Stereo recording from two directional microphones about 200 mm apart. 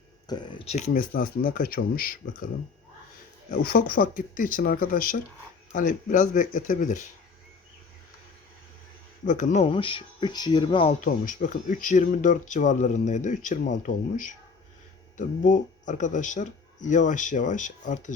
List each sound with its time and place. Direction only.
0.3 s speech: 25° left (ahead or behind); by 2.1 s 45° left (ahead or behind)
3.5 s speech: 45° left (ahead or behind)
9.2 s speech: 40° left (ahead or behind)
11.0 s speech: 40° left (ahead or behind)
15.4 s speech: 40° left (ahead or behind)